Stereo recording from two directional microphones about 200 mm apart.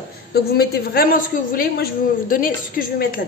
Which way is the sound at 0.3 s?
50° left (ahead or behind).